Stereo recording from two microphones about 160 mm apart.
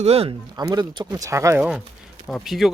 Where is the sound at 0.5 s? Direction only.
20° right (ahead or behind); by 2.7 s centre (ahead or behind).